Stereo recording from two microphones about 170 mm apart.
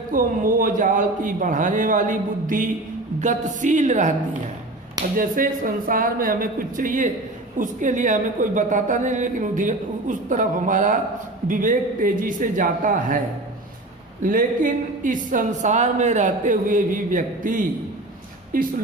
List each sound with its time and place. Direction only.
0.1 s speech: 55° right (ahead or behind)
5.1 s speech: 55° right (ahead or behind)
14.2 s speech: 55° right (ahead or behind)